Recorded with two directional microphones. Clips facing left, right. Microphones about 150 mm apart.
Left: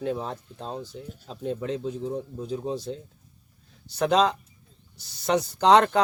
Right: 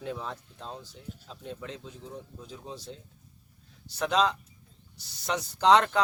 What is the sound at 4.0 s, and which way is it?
Speech, 50° left (ahead or behind).